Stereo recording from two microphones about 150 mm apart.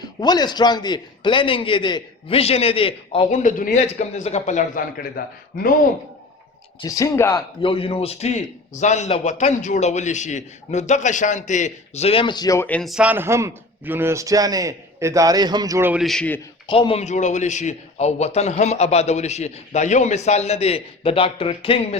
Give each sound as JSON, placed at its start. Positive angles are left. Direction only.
{"t": 0.2, "sound": "a man's voice", "side_deg": 25}
{"t": 3.2, "sound": "a man's voice", "side_deg": 55}
{"t": 6.8, "sound": "speech", "side_deg": 20}
{"t": 7.6, "sound": "a man's voice", "side_deg": 35}
{"t": 12.6, "sound": "speech", "side_deg": 10}
{"t": 12.9, "sound": "a man's voice", "side_deg": -10}
{"t": 15.9, "sound": "a man's voice", "side_deg": 0}
{"t": 16.6, "sound": "a man's voice", "side_deg": 35}